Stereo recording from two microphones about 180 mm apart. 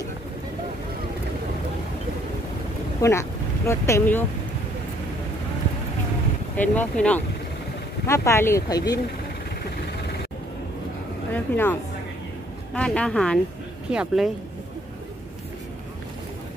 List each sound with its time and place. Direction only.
3.0 s speech: 15° left (ahead or behind)
6.5 s speech: 10° left (ahead or behind)
11.3 s speech: 10° left (ahead or behind)